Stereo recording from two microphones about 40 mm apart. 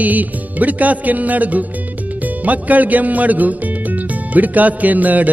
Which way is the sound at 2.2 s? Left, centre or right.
Right.